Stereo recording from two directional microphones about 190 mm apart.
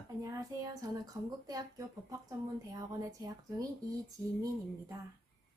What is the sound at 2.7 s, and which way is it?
Speech, 20° right (ahead or behind).